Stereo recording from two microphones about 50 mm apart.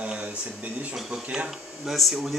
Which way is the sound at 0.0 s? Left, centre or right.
Right.